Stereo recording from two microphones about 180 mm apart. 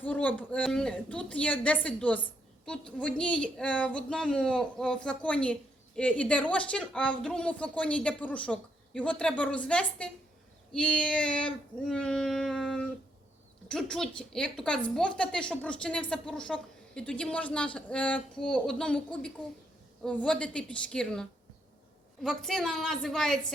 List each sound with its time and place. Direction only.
0.0 s a woman's voice: 10° left (ahead or behind)